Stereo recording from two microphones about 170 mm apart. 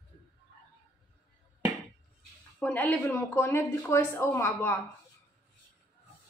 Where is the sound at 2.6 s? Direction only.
10° left (ahead or behind).